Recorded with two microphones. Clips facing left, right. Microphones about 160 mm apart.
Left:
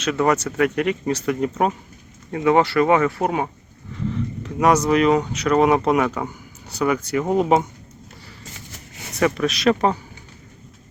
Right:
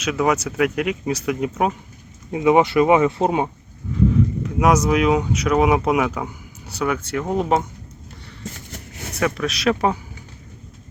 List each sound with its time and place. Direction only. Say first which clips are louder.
0.0 s speech: left 1 dB; 5° right (ahead or behind)
2.3 s speech: right 2 dB; 15° right (ahead or behind)
4.1 s speech: right 7 dB; 5° right (ahead or behind)
9.1 s speech: left 3 dB; centre (ahead or behind)